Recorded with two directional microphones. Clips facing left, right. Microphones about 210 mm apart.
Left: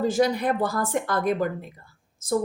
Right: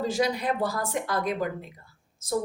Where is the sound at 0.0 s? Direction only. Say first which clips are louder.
Left 4 dB; 50° left (ahead or behind).